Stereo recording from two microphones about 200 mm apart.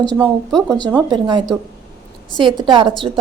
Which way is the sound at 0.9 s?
20° right (ahead or behind).